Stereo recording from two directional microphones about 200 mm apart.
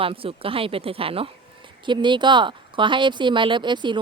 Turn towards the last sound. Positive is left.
turn(degrees=-25)  # may be behind; listen again after turning